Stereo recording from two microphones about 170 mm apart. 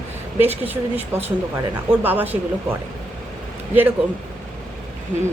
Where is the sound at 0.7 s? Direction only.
10° right (ahead or behind).